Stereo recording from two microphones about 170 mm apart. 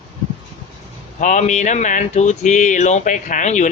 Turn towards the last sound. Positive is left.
turn(degrees=45)  # may be behind; listen again after turning